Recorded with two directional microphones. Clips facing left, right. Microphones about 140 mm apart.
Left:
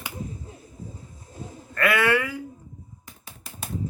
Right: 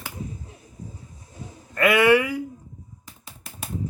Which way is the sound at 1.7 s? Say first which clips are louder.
Right 5 dB; 20° right (ahead or behind).